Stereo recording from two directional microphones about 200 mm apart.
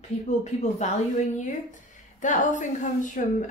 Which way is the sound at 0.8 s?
35° left (ahead or behind).